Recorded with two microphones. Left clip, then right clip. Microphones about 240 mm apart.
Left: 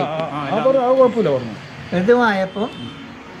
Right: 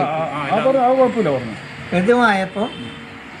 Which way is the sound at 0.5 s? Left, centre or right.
Centre.